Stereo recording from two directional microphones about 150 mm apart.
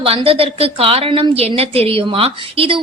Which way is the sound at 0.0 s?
40° right (ahead or behind).